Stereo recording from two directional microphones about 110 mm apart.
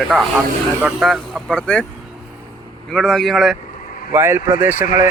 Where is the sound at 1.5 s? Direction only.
10° left (ahead or behind).